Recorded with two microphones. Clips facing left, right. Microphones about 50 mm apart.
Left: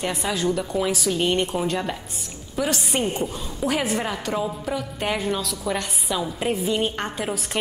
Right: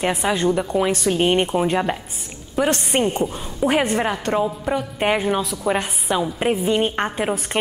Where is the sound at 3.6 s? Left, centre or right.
Centre.